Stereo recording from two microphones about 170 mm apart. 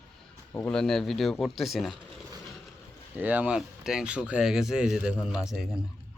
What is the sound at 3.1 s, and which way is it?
Speech, 10° right (ahead or behind).